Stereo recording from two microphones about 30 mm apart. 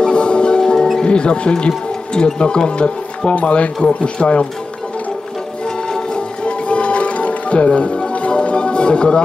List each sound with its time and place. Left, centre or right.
0.0 s music: left
1.0 s speech: left
5.9 s music: left